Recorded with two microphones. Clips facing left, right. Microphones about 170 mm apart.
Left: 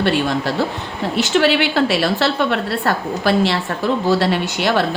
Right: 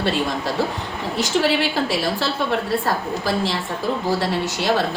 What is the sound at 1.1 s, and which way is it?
A woman's voice, 75° left (ahead or behind).